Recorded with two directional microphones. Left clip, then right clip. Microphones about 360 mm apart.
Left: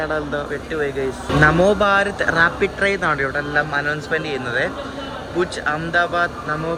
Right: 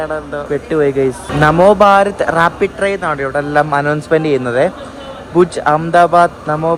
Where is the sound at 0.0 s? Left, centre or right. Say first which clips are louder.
Right 3 dB; centre.